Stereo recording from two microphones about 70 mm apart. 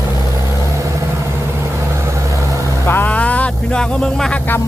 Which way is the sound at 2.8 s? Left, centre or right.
Left.